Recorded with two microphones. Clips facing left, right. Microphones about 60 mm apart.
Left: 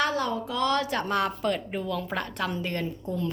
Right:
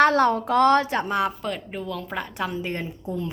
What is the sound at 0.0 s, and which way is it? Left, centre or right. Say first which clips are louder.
Speech: right 9 dB; right.